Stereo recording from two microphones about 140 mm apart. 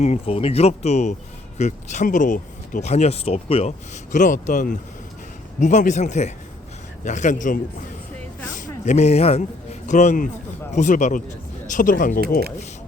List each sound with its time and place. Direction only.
0.0 s speech: 50° left (ahead or behind)
4.1 s speech: 65° left (ahead or behind)